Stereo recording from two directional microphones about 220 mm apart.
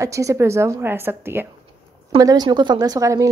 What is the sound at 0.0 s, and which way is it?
A woman's voice, 15° right (ahead or behind).